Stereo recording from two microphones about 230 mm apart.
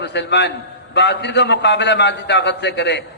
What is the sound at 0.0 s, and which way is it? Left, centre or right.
A man's voice, left.